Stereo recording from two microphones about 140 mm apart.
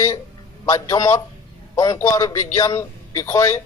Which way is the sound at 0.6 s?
25° left (ahead or behind).